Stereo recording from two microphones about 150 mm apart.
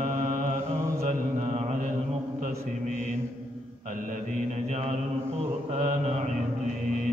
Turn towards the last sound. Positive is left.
turn(degrees=-45)  # may be behind; listen again after turning